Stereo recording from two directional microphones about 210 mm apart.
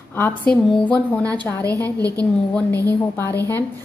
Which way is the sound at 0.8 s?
5° left (ahead or behind).